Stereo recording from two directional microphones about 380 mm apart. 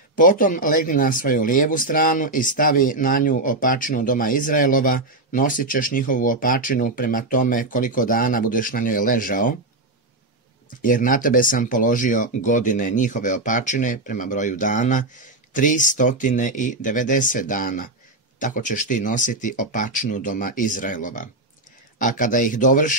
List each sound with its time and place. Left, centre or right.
0.1 s speech: left
10.8 s speech: left